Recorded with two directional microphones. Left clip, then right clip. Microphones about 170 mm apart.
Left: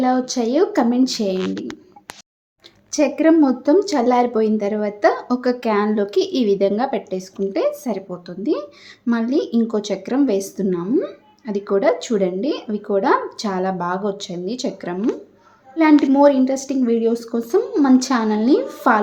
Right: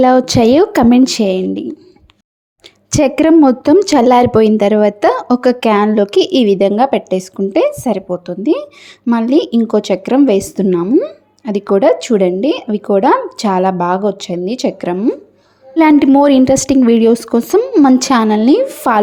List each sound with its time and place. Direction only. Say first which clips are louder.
0.0 s a woman's voice: right 10 dB; 50° right (ahead or behind)
2.9 s a woman's voice: right 6 dB; 55° right (ahead or behind)
15.7 s a woman's voice: right 6 dB; 55° right (ahead or behind)